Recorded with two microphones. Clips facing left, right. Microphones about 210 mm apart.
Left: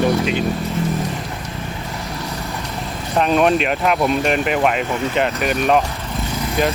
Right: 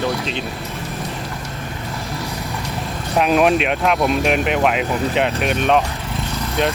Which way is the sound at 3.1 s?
5° right (ahead or behind).